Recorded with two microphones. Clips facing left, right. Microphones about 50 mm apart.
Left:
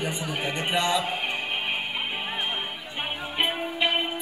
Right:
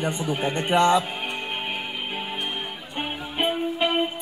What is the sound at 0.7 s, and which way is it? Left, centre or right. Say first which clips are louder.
Speech: right 7 dB; right.